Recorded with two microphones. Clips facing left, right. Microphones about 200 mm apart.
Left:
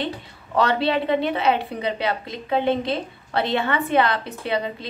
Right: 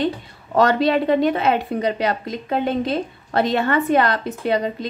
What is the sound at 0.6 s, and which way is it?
A woman's voice, 45° right (ahead or behind).